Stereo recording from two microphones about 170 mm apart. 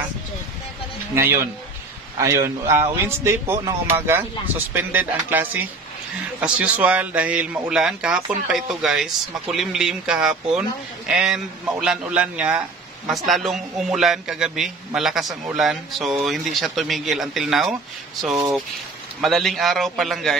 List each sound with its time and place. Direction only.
1.1 s speech: 15° right (ahead or behind)
5.3 s speech: 10° right (ahead or behind)
19.2 s speech: centre (ahead or behind)